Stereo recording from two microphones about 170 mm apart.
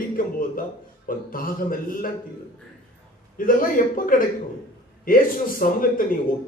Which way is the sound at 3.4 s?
55° left (ahead or behind).